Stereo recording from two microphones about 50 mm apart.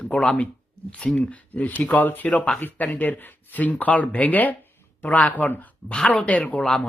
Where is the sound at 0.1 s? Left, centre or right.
Centre; by 2.5 s left.